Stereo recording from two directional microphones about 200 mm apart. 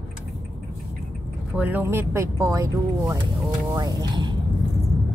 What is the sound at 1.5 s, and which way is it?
Speech, 10° right (ahead or behind).